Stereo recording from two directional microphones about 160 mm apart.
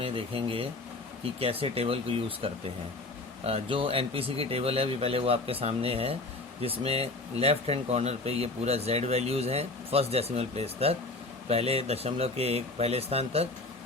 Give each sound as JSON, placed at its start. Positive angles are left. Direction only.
{"t": 0.0, "sound": "speech", "side_deg": -35}